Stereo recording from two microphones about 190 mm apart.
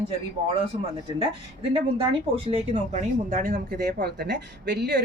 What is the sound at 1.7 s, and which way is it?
Speech, 30° right (ahead or behind).